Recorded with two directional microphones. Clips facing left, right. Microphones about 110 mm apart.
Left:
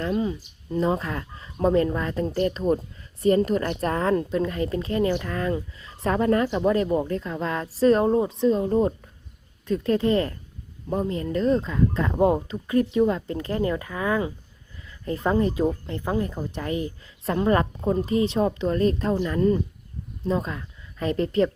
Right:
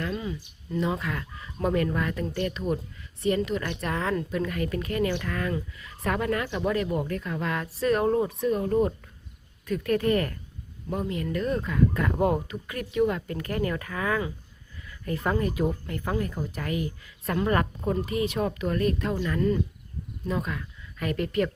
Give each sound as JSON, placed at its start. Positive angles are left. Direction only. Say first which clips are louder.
{"t": 0.0, "sound": "speech", "louder": "left 6 dB", "side_deg": 30}